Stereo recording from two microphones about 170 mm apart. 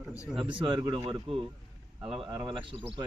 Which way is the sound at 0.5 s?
30° right (ahead or behind).